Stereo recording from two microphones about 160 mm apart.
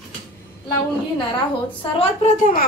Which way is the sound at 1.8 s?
35° left (ahead or behind).